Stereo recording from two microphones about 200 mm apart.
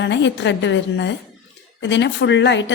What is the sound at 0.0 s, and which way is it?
A woman's voice, 65° left (ahead or behind).